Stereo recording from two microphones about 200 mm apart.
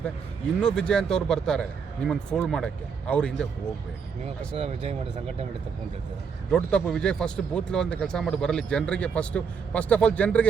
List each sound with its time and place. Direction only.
0.6 s speech: 5° left (ahead or behind)
4.5 s speech: 30° right (ahead or behind)
6.5 s speech: 5° left (ahead or behind)